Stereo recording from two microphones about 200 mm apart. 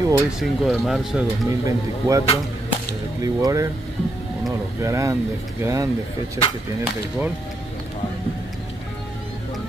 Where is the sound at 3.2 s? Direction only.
15° right (ahead or behind).